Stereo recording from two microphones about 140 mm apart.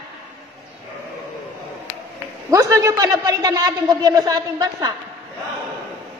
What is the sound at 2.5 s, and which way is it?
A woman's voice, 25° right (ahead or behind).